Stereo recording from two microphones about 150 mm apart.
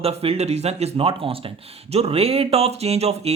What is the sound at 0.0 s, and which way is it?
Speech, 40° right (ahead or behind).